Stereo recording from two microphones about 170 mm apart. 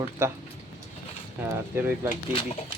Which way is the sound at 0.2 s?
15° right (ahead or behind).